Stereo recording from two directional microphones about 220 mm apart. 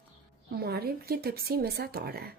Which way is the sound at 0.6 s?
45° right (ahead or behind).